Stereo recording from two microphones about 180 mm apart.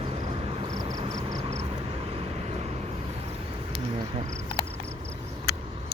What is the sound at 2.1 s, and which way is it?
Vehicle, 35° right (ahead or behind).